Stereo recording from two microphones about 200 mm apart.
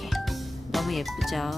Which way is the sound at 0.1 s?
Centre (ahead or behind).